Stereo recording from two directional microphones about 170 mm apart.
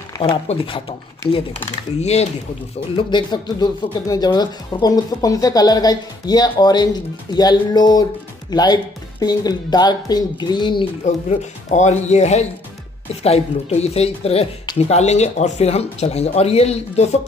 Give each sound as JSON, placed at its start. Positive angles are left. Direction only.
{"t": 0.2, "sound": "speech", "side_deg": 30}
{"t": 2.0, "sound": "speech", "side_deg": 40}
{"t": 3.0, "sound": "speech", "side_deg": 25}
{"t": 11.1, "sound": "speech", "side_deg": 45}